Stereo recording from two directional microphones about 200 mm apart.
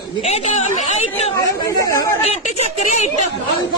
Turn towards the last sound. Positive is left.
turn(degrees=35)  # may be behind; listen again after turning